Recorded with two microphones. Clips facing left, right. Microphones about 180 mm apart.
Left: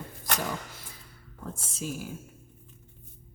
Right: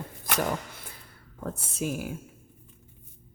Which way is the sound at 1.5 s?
60° right (ahead or behind).